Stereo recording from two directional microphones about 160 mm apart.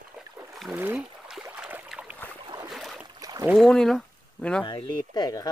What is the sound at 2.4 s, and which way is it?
Boat, 25° right (ahead or behind).